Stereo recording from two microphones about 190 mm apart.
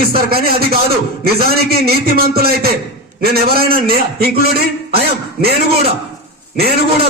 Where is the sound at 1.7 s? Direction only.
55° right (ahead or behind).